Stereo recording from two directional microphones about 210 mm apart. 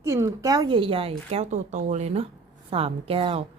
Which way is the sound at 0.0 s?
15° right (ahead or behind).